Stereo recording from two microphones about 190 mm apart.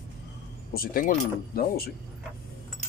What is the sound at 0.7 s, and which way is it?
Speech, 50° left (ahead or behind).